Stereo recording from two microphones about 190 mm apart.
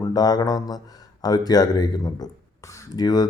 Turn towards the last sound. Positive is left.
turn(degrees=20)  # may be behind; listen again after turning